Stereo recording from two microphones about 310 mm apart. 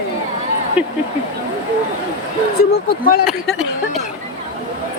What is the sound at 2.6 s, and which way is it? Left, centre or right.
Speech, left.